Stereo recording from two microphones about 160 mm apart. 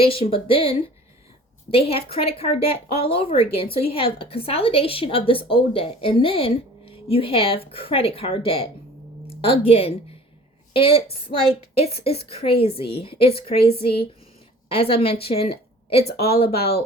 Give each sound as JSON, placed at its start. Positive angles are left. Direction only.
{"t": 0.0, "sound": "a woman's voice", "side_deg": 35}